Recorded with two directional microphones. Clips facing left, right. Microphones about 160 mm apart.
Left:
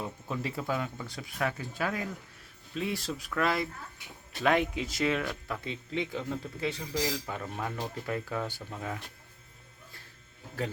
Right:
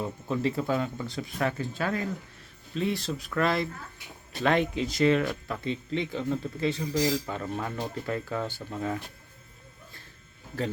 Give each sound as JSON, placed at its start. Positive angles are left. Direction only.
{"t": 0.3, "sound": "speech", "side_deg": 5}